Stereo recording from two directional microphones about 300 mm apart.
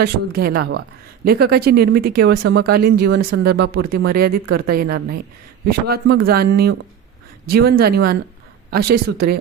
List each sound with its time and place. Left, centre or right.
0.0 s speech: right